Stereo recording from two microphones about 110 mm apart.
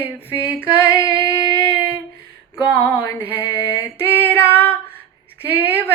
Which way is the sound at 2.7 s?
20° left (ahead or behind).